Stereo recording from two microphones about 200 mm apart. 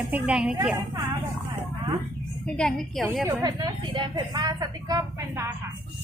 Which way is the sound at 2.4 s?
5° left (ahead or behind).